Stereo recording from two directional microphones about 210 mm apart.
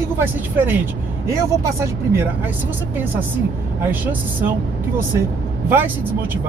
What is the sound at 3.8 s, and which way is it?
Speech, 10° right (ahead or behind).